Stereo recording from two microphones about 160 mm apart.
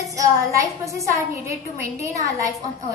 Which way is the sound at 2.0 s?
20° right (ahead or behind).